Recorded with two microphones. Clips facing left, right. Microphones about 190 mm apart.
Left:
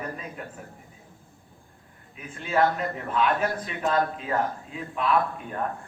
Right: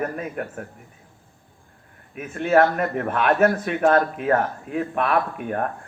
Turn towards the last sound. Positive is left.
turn(degrees=-65)  # may be behind; listen again after turning